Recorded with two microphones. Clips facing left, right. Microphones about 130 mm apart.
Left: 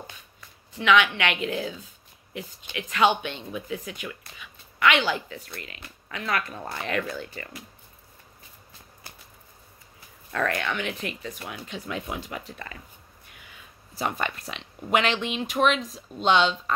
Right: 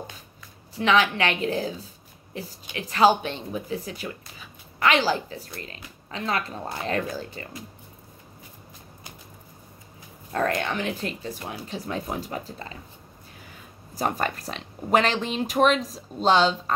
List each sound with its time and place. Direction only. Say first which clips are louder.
0.7 s speech: even; 35° right (ahead or behind)
10.3 s speech: right 2 dB; 35° right (ahead or behind)
13.9 s speech: right 3 dB; 40° right (ahead or behind)